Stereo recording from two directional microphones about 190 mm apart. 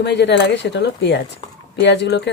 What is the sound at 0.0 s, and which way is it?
Speech, 65° left (ahead or behind).